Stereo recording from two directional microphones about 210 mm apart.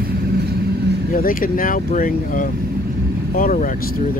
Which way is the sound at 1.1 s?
40° left (ahead or behind).